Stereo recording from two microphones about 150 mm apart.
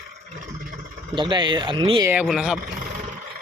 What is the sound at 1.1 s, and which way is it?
Speech, 35° right (ahead or behind).